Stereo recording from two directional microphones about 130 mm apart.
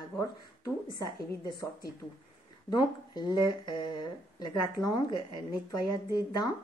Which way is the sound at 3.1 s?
35° left (ahead or behind).